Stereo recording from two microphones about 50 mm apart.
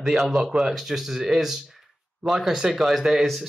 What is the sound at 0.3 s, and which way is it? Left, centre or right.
Speech, centre.